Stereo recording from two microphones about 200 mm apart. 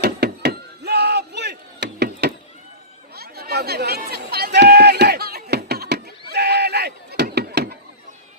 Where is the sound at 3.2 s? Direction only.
50° right (ahead or behind).